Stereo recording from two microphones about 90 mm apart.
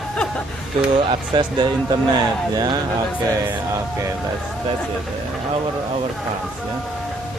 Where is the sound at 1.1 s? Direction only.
55° right (ahead or behind).